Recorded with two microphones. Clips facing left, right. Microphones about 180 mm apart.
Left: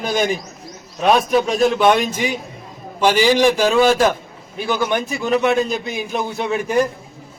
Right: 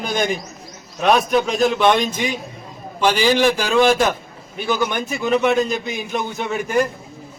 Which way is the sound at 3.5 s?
Centre (ahead or behind).